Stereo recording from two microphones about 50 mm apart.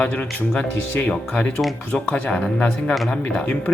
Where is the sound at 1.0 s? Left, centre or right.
Left.